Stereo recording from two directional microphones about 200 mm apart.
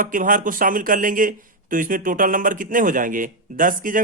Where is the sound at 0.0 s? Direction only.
40° right (ahead or behind).